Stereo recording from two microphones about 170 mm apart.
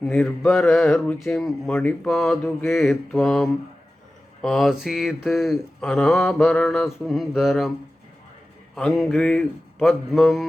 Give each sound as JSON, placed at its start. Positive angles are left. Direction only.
{"t": 0.0, "sound": "speech", "side_deg": 5}
{"t": 8.7, "sound": "speech", "side_deg": 0}